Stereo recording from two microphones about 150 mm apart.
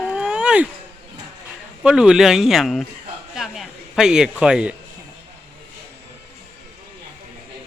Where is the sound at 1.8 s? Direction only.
5° right (ahead or behind).